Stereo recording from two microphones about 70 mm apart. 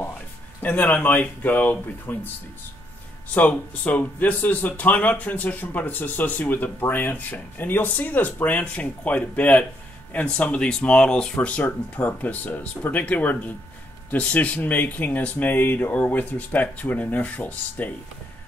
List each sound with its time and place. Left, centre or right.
0.6 s speech: left
3.3 s speech: left